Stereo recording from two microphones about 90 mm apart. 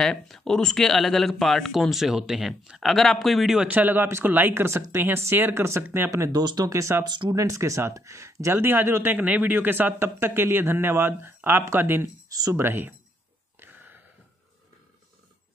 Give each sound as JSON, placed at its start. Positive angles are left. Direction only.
{"t": 0.0, "sound": "speech", "side_deg": 5}
{"t": 6.1, "sound": "speech", "side_deg": -35}
{"t": 7.1, "sound": "speech", "side_deg": -55}
{"t": 7.3, "sound": "speech", "side_deg": -35}
{"t": 12.3, "sound": "speech", "side_deg": -40}
{"t": 12.5, "sound": "speech", "side_deg": -25}
{"t": 13.6, "sound": "a sound", "side_deg": -20}